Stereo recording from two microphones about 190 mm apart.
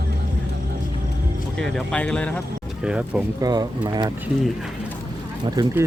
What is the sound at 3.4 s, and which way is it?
Speech, 20° right (ahead or behind).